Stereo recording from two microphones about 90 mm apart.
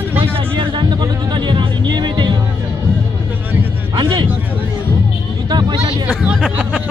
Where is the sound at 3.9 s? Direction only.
60° right (ahead or behind).